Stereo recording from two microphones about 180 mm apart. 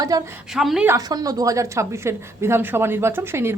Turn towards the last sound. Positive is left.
turn(degrees=-15)  # may be behind; listen again after turning